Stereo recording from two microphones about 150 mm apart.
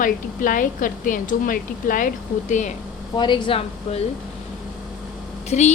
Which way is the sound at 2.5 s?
55° left (ahead or behind).